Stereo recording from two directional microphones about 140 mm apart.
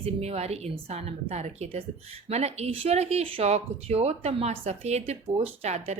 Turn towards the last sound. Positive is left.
turn(degrees=-50)  # may be behind; listen again after turning